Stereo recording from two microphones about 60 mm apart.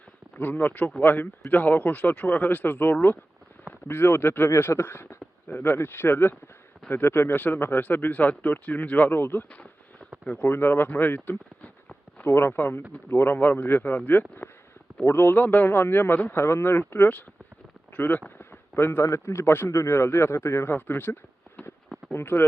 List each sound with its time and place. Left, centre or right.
0.3 s speech: left
3.7 s speech: left
9.5 s a sound: left
10.2 s speech: left
12.3 s speech: left
16.4 s speech: left
17.9 s speech: left
18.3 s a sound: left
19.0 s speech: left